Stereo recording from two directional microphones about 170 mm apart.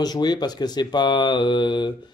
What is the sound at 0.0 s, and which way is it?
Speech, 25° left (ahead or behind).